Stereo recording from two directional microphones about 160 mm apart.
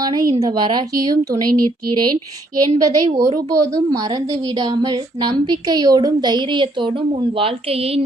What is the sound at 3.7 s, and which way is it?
A woman's voice, 25° right (ahead or behind).